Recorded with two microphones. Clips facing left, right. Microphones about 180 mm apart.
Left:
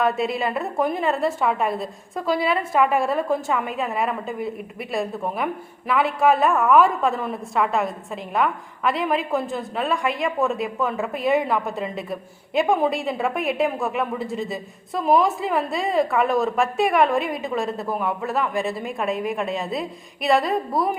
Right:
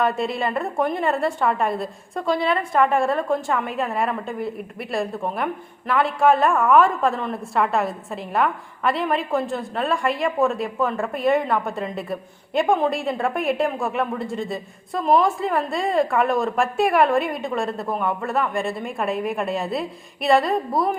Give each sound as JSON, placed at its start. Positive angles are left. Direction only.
{"t": 0.0, "sound": "a woman's voice", "side_deg": 0}